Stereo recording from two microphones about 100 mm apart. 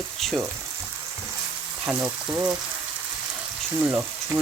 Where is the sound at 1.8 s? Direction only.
15° right (ahead or behind).